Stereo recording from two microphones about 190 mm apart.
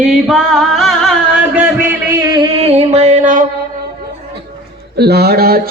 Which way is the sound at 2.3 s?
25° right (ahead or behind).